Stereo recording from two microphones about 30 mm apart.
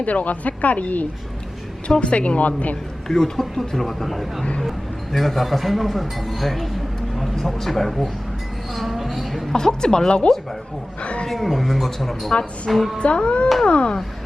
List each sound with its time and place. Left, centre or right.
0.0 s speech: left
2.0 s a woman's voice: left
3.1 s speech: centre
8.7 s a sound: centre
9.1 s music: centre
9.5 s speech: centre
11.0 s a sound: left
11.3 s speech: centre
12.3 s speech: left